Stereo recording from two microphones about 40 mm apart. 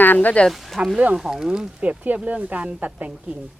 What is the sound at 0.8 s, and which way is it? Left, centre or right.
Speech, right.